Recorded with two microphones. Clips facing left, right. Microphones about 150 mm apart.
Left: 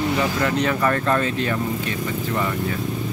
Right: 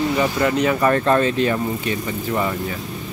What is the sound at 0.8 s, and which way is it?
Speech, 25° right (ahead or behind).